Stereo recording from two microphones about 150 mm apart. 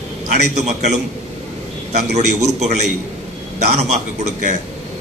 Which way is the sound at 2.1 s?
50° right (ahead or behind).